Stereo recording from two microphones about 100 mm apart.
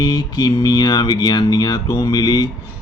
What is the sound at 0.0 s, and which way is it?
Speech, 40° left (ahead or behind).